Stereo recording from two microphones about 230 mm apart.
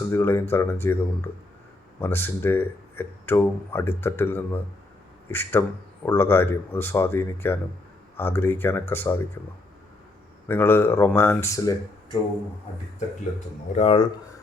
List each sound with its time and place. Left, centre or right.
0.0 s speech: centre
10.5 s speech: centre
13.7 s speech: left